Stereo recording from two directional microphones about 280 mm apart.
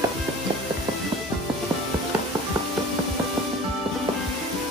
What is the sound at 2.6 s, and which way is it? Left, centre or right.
Music, centre.